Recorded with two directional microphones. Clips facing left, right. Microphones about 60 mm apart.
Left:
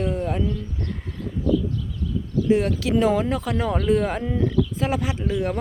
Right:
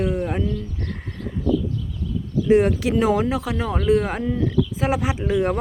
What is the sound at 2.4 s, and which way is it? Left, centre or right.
Speech, right.